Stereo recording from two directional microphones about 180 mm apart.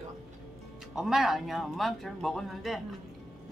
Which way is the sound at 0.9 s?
Centre (ahead or behind).